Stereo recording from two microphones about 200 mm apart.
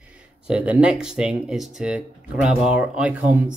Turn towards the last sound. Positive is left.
turn(degrees=-5)  # may be behind; listen again after turning